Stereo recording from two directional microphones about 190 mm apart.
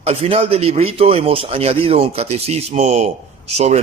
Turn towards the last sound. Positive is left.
turn(degrees=-35)  # may be behind; listen again after turning